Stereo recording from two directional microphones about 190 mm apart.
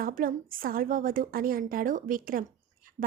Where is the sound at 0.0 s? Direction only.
45° right (ahead or behind).